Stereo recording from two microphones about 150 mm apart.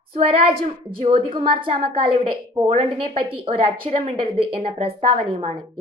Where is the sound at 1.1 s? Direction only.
35° right (ahead or behind).